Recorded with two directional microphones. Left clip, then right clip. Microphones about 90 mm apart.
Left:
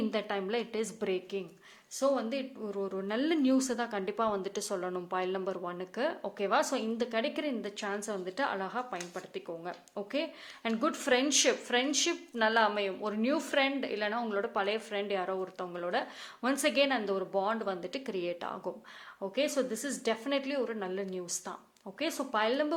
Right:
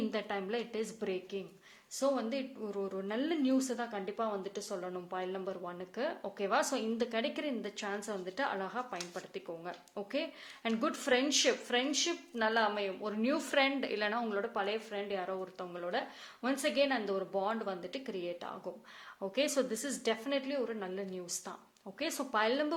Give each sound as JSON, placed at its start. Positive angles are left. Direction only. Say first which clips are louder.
{"t": 0.1, "sound": "a woman's voice", "louder": "left 4 dB", "side_deg": 25}
{"t": 13.1, "sound": "a woman's voice", "louder": "left 1 dB", "side_deg": 15}
{"t": 13.6, "sound": "a woman's voice", "louder": "right 1 dB", "side_deg": 0}
{"t": 14.3, "sound": "a woman's voice", "louder": "left 3 dB", "side_deg": 15}
{"t": 14.8, "sound": "a woman's voice", "louder": "left 4 dB", "side_deg": 35}
{"t": 19.2, "sound": "a woman's voice", "louder": "left 1 dB", "side_deg": 0}
{"t": 19.7, "sound": "a woman's voice", "louder": "left 2 dB", "side_deg": 15}
{"t": 20.2, "sound": "a woman's voice", "louder": "left 3 dB", "side_deg": 25}
{"t": 22.3, "sound": "a woman's voice", "louder": "left 1 dB", "side_deg": 5}